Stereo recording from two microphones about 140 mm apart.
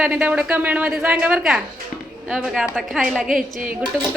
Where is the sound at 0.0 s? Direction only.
10° right (ahead or behind).